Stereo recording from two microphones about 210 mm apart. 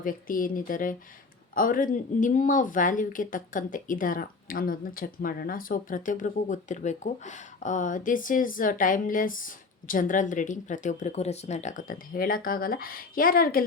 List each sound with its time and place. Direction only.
0.0 s speech: 40° left (ahead or behind)